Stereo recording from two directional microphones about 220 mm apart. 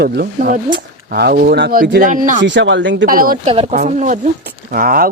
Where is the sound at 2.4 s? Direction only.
55° right (ahead or behind).